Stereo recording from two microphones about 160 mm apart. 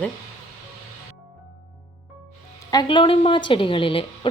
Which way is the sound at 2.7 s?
30° left (ahead or behind).